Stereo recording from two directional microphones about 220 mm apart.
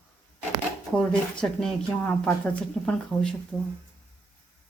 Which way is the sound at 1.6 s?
5° left (ahead or behind).